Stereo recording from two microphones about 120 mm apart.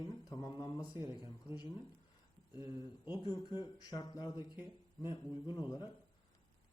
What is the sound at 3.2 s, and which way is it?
Speech, 35° left (ahead or behind).